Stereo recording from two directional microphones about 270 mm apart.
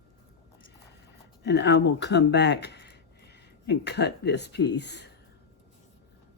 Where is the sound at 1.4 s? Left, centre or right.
Left.